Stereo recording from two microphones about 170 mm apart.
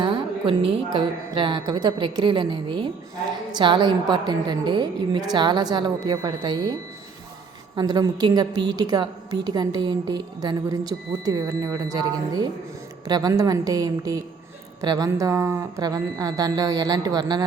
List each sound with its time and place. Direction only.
0.0 s a woman's voice: 30° right (ahead or behind)
7.8 s a woman's voice: 25° right (ahead or behind)